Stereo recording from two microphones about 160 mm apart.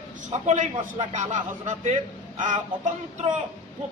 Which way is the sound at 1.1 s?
50° right (ahead or behind).